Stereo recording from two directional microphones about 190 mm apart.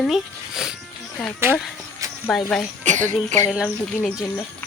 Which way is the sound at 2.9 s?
40° right (ahead or behind).